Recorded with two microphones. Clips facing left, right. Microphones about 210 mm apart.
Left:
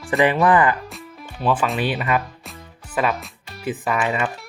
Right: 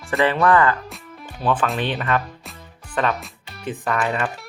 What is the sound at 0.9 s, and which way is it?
Music, 5° left (ahead or behind).